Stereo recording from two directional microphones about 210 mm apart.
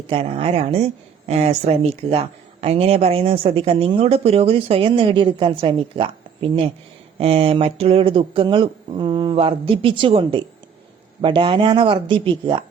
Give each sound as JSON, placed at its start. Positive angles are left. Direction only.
{"t": 0.1, "sound": "speech", "side_deg": -25}